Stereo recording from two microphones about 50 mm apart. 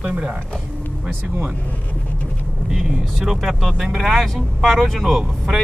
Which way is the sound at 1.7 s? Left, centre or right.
Left.